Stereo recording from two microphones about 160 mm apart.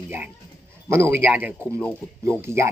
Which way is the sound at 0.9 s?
15° right (ahead or behind).